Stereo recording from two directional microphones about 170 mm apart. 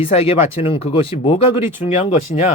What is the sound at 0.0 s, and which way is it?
Speech, 35° left (ahead or behind).